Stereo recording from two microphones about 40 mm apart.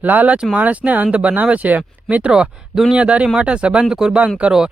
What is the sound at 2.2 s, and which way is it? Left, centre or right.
Speech, right.